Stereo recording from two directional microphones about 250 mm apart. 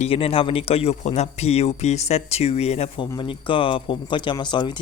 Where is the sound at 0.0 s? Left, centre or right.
Left.